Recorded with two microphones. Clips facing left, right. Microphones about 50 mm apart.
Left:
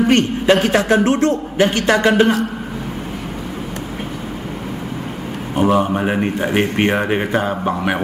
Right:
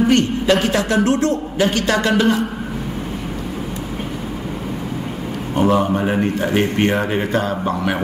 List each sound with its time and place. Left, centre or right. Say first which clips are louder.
0.1 s a man's voice: left 1 dB; left
5.6 s a man's voice: left 1 dB; centre